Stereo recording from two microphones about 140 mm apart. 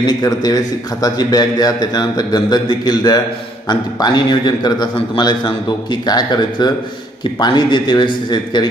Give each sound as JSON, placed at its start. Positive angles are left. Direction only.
{"t": 0.0, "sound": "a man's voice", "side_deg": 30}